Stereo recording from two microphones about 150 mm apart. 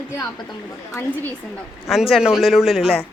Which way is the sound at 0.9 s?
20° left (ahead or behind).